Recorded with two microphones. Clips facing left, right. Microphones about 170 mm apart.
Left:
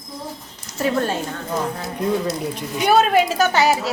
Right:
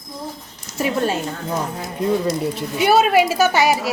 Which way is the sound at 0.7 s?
10° right (ahead or behind).